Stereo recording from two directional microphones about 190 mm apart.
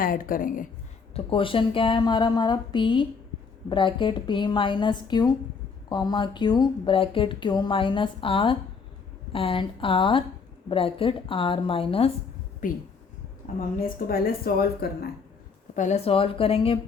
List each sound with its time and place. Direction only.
0.0 s speech: 45° left (ahead or behind)
1.1 s speech: 25° left (ahead or behind)
12.6 s speech: 45° left (ahead or behind)
15.7 s speech: 40° left (ahead or behind)